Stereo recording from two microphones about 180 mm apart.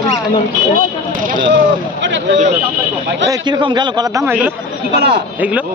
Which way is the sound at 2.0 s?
90° right.